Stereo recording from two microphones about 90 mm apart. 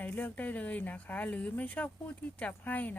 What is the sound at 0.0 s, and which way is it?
Speech, 20° left (ahead or behind).